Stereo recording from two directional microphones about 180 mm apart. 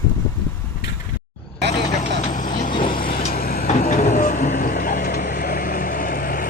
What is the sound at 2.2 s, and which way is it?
Vehicle, 45° left (ahead or behind).